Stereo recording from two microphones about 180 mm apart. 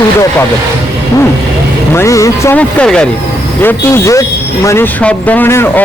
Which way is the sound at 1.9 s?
15° left (ahead or behind).